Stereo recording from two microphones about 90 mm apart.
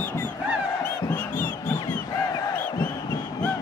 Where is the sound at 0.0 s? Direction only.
20° left (ahead or behind).